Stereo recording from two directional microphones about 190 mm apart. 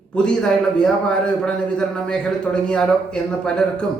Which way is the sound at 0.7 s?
5° left (ahead or behind).